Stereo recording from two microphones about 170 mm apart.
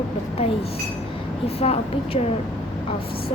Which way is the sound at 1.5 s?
35° left (ahead or behind).